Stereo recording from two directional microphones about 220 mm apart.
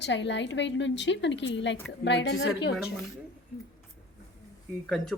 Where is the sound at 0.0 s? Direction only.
55° left (ahead or behind).